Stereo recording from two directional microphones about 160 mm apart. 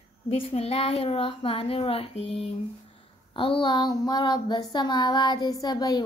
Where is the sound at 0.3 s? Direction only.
40° left (ahead or behind).